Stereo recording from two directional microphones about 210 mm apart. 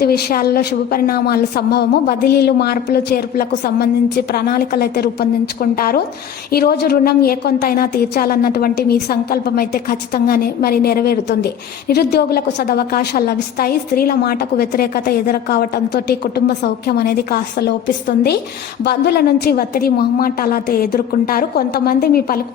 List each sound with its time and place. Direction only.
0.0 s a woman's voice: 50° left (ahead or behind)